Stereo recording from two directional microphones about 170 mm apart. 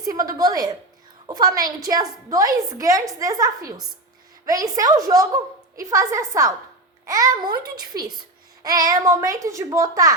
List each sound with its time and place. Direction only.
0.0 s a child's voice: 20° right (ahead or behind)